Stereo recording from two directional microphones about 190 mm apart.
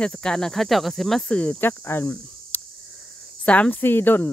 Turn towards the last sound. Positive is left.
turn(degrees=10)  # may be behind; listen again after turning